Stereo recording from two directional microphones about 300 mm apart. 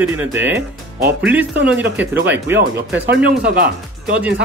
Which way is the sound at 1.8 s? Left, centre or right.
Centre.